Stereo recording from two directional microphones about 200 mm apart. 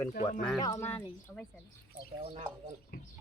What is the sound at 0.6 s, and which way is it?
Speech, 15° left (ahead or behind).